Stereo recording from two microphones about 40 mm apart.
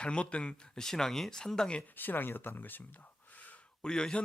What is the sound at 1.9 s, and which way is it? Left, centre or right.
Speech, left.